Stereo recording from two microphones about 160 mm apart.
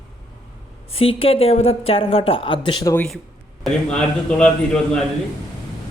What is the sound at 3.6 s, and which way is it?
A man's voice, 5° left (ahead or behind).